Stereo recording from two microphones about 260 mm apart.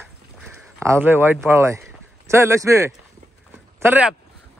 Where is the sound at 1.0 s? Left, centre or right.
Centre.